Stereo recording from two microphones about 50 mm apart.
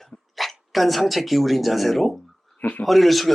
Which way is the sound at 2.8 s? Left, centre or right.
Centre.